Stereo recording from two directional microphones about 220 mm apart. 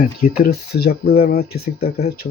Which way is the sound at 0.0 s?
40° left (ahead or behind).